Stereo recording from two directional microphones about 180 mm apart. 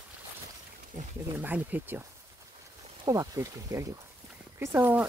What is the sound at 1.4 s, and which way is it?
Speech, 10° right (ahead or behind).